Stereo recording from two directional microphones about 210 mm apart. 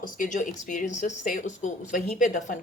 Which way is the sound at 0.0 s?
40° left (ahead or behind).